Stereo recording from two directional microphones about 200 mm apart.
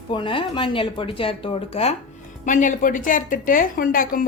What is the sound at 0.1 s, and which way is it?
A woman's voice, 25° left (ahead or behind).